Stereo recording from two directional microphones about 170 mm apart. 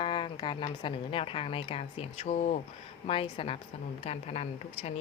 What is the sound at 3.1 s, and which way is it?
Speech, 30° left (ahead or behind).